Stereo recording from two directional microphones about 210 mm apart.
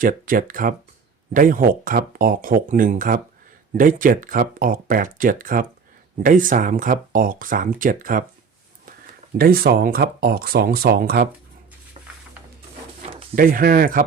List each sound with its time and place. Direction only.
0.0 s speech: 40° right (ahead or behind)
9.4 s speech: 45° right (ahead or behind)
12.0 s a sound: 30° right (ahead or behind)
13.3 s speech: 45° right (ahead or behind)